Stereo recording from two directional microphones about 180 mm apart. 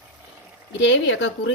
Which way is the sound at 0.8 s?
90° left.